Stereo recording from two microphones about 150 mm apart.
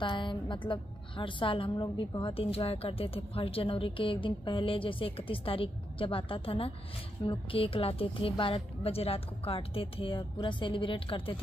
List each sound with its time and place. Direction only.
0.0 s a woman's voice: 30° left (ahead or behind)